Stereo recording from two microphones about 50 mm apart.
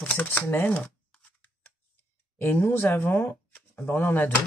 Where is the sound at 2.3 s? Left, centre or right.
Left.